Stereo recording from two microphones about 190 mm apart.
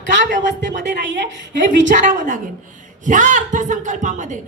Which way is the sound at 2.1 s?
45° right (ahead or behind).